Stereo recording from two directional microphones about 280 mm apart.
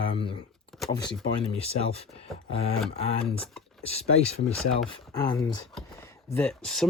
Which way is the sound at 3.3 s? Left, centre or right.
Centre.